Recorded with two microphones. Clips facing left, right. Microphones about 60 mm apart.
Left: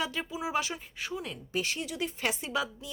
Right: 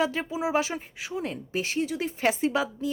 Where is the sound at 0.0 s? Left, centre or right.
Right.